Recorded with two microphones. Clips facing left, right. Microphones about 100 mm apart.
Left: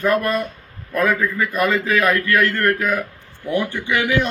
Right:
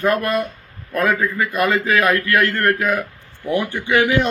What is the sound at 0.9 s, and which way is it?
A man's voice, 20° right (ahead or behind).